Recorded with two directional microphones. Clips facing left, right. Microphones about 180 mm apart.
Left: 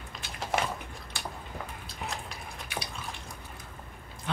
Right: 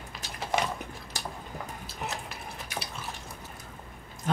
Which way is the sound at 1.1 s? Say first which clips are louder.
Right 1 dB; 40° right (ahead or behind).